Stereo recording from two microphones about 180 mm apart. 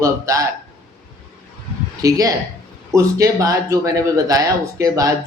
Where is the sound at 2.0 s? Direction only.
20° right (ahead or behind).